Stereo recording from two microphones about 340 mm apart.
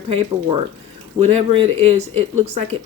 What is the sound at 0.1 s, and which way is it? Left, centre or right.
Speech, centre.